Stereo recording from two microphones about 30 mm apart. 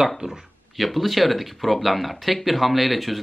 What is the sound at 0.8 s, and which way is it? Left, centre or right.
Speech, centre.